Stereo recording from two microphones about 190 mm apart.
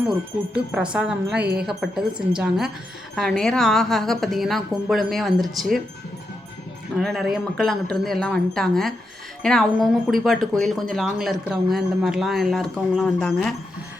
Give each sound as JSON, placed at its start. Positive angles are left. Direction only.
{"t": 0.7, "sound": "a woman's voice", "side_deg": -5}
{"t": 6.9, "sound": "a woman's voice", "side_deg": 0}